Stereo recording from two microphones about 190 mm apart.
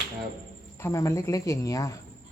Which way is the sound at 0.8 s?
15° left (ahead or behind).